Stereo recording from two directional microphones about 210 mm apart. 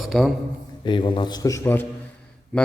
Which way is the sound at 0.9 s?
25° left (ahead or behind).